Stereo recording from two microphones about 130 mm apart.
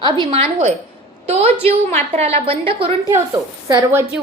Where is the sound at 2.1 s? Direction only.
55° right (ahead or behind).